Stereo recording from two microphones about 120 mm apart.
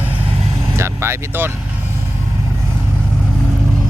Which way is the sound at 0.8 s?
20° right (ahead or behind).